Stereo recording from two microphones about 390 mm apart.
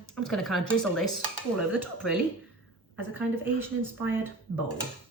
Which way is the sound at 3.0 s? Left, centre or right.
Centre.